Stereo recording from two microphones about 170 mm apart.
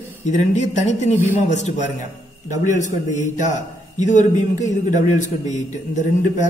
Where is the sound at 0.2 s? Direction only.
45° left (ahead or behind).